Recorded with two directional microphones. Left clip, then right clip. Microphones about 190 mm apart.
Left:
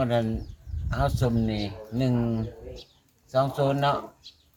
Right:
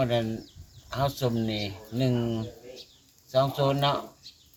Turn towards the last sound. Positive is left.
turn(degrees=0)  # may be behind; listen again after turning